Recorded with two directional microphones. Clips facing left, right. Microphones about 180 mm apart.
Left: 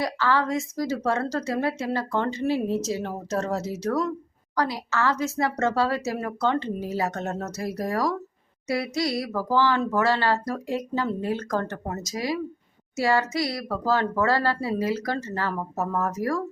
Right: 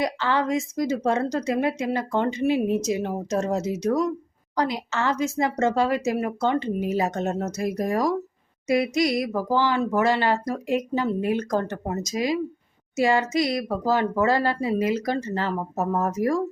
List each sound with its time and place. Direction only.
0.0 s a woman's voice: 20° right (ahead or behind)